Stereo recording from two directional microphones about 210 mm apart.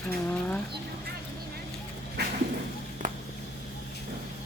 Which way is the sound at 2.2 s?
50° right (ahead or behind).